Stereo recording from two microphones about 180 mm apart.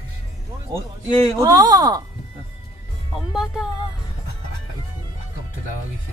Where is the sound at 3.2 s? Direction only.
Centre (ahead or behind).